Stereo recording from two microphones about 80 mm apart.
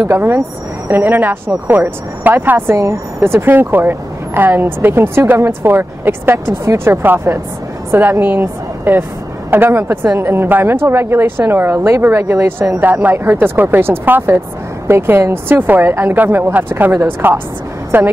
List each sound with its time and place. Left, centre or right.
0.0 s a woman's voice: right